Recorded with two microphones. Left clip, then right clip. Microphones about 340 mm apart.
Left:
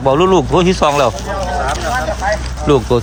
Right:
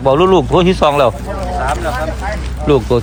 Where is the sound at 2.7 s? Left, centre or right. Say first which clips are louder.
Even; centre.